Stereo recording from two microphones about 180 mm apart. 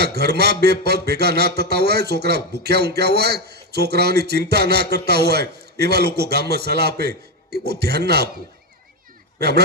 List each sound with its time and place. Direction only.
0.0 s a man's voice: 65° right (ahead or behind)
9.4 s a man's voice: 65° right (ahead or behind)